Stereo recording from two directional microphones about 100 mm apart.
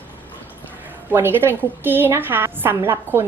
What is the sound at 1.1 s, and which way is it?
A woman's voice, 20° right (ahead or behind).